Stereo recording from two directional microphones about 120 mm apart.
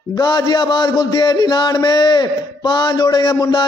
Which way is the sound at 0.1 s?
35° left (ahead or behind).